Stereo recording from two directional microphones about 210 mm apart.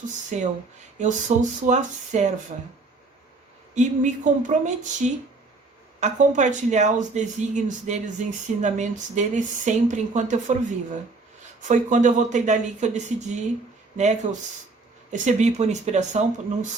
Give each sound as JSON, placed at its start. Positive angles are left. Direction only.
{"t": 0.3, "sound": "speech", "side_deg": -35}
{"t": 3.8, "sound": "speech", "side_deg": -35}
{"t": 11.7, "sound": "speech", "side_deg": -35}